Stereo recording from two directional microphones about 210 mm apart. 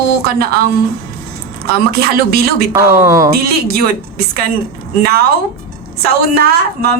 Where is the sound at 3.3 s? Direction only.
45° right (ahead or behind).